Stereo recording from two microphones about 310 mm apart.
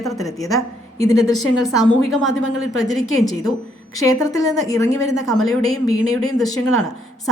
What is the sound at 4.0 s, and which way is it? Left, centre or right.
Speech, centre.